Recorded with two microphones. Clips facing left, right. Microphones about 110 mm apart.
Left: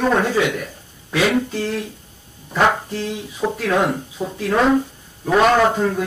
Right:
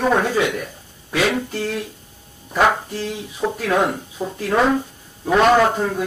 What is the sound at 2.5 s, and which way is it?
Speech, 5° right (ahead or behind).